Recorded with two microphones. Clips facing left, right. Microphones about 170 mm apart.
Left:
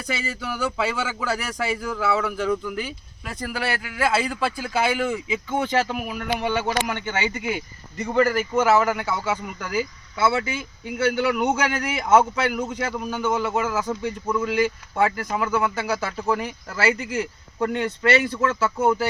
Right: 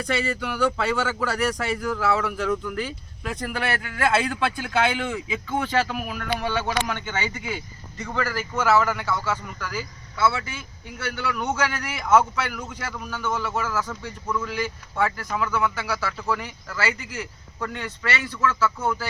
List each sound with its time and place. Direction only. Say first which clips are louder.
0.0 s speech: right 4 dB; centre (ahead or behind)
5.6 s a man's voice: left 1 dB; 20° left (ahead or behind)